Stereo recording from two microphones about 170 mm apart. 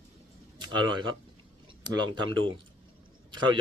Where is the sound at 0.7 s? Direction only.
25° right (ahead or behind).